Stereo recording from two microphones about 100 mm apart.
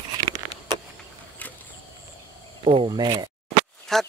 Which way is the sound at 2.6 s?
65° right (ahead or behind).